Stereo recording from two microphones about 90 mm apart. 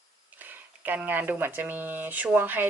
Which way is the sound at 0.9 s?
20° right (ahead or behind).